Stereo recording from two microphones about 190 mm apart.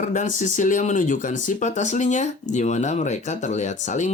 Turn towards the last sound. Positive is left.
turn(degrees=35)  # may be behind; listen again after turning